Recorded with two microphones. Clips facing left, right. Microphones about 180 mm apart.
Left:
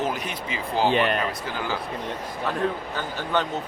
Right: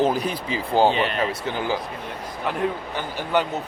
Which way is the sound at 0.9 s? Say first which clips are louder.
Left 2 dB; 55° left (ahead or behind).